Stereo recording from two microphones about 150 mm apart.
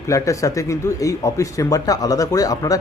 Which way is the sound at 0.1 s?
20° left (ahead or behind).